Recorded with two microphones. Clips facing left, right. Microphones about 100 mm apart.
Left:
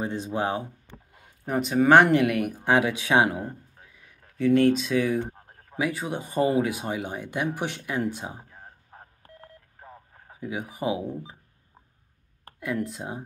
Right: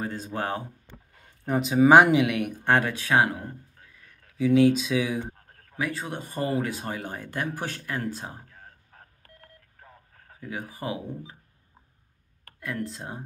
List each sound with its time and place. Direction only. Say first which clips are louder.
0.0 s speech: left 3 dB; 20° left (ahead or behind); by 2.5 s centre (ahead or behind)
2.6 s speech: left 1 dB; 10° left (ahead or behind)
4.4 s speech: even; centre (ahead or behind)
5.3 s speech: left 6 dB; 20° left (ahead or behind)
8.1 s telephone dialing: left 1 dB; 15° left (ahead or behind)
10.7 s speech: left 7 dB; 20° left (ahead or behind)
12.4 s a sound: left 4 dB; 20° left (ahead or behind)
12.9 s speech: left 3 dB; 15° left (ahead or behind)